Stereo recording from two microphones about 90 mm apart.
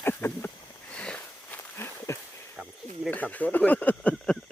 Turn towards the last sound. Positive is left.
turn(degrees=5)  # may be behind; listen again after turning